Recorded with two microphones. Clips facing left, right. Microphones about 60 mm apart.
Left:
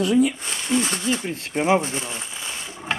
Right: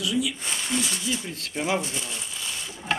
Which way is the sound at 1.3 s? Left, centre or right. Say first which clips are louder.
Left 8 dB; left.